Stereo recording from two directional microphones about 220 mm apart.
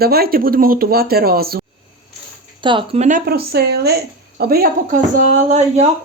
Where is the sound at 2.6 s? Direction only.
20° right (ahead or behind).